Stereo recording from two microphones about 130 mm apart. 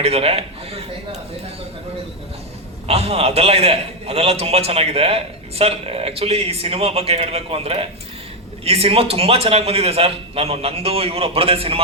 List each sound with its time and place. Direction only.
0.0 s speech: 50° right (ahead or behind)
2.8 s a man's voice: 50° right (ahead or behind)